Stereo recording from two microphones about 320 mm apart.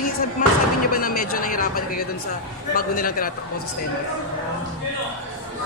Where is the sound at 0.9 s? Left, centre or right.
Left.